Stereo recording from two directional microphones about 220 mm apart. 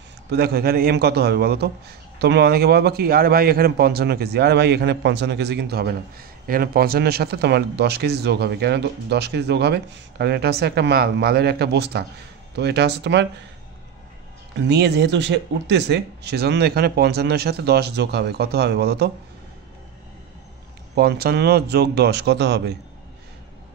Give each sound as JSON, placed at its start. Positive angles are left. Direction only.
{"t": 0.3, "sound": "a man's voice", "side_deg": -45}
{"t": 14.7, "sound": "a man's voice", "side_deg": -50}
{"t": 20.9, "sound": "a man's voice", "side_deg": -45}